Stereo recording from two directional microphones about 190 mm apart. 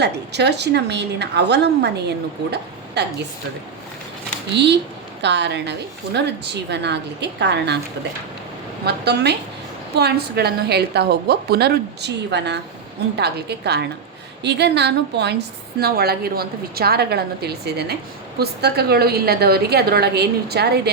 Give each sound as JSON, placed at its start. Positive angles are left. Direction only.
{"t": 0.0, "sound": "a woman's voice", "side_deg": -60}
{"t": 4.5, "sound": "a woman's voice", "side_deg": -65}
{"t": 8.8, "sound": "a woman's voice", "side_deg": -60}